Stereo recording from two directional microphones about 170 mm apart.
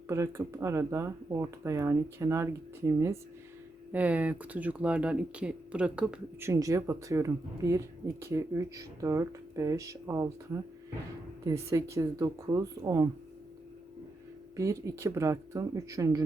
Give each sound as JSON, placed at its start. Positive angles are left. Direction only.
{"t": 0.1, "sound": "speech", "side_deg": -15}
{"t": 6.5, "sound": "speech", "side_deg": -20}
{"t": 14.5, "sound": "speech", "side_deg": -20}